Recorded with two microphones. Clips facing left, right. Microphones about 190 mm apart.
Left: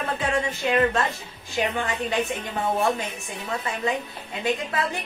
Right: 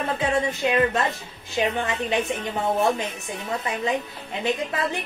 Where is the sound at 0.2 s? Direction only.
20° right (ahead or behind).